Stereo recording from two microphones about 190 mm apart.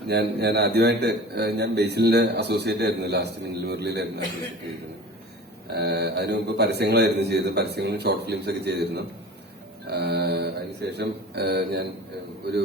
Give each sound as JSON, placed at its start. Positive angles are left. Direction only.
{"t": 0.1, "sound": "a man's voice", "side_deg": -60}
{"t": 5.7, "sound": "a man's voice", "side_deg": -60}